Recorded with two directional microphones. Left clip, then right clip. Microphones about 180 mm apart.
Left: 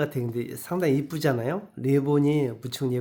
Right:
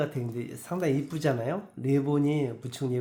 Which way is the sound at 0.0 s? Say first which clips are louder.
Left 4 dB; 45° left (ahead or behind).